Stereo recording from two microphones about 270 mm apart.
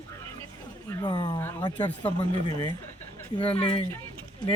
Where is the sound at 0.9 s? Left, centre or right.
Centre.